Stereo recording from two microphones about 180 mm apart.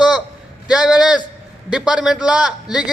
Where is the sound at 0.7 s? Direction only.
5° right (ahead or behind).